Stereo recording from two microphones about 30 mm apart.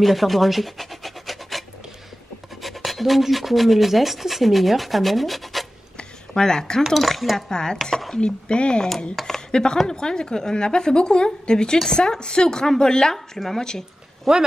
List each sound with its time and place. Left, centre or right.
0.0 s rub: centre
2.6 s speech: centre
5.9 s a sound: left
6.9 s speech: centre
7.4 s a woman's voice: left
8.2 s speech: left
9.2 s a sound: left
9.8 s a woman's voice: left
14.3 s speech: centre